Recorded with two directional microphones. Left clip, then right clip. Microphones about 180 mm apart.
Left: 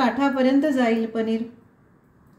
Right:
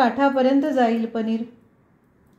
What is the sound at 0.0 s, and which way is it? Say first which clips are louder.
A woman's voice: right 3 dB; 45° right (ahead or behind).